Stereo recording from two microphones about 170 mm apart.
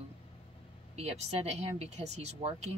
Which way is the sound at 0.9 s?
40° right (ahead or behind).